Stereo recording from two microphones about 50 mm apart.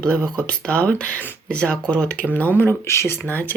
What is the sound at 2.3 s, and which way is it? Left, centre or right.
Speech, left.